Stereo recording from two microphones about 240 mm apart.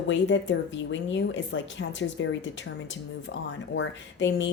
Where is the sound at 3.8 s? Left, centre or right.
Left.